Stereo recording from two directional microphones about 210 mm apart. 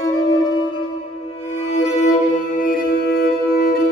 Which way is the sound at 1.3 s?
30° left (ahead or behind).